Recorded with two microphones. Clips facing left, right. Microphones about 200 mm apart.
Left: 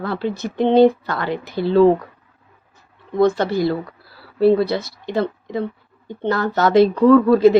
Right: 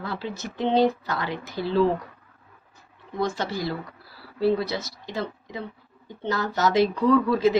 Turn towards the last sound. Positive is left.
turn(degrees=60)  # may be behind; listen again after turning